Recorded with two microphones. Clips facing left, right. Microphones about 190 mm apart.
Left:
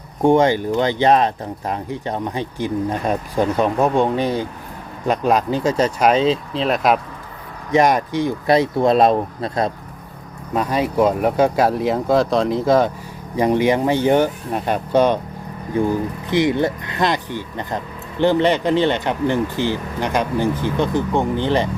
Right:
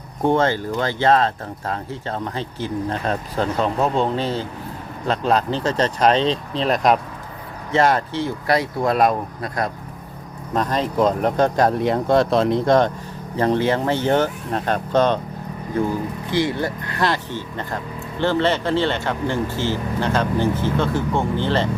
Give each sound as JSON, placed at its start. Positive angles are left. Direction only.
{"t": 0.2, "sound": "speech", "side_deg": 15}
{"t": 7.7, "sound": "speech", "side_deg": 15}
{"t": 10.5, "sound": "speech", "side_deg": 10}
{"t": 13.3, "sound": "speech", "side_deg": 15}
{"t": 16.3, "sound": "speech", "side_deg": 20}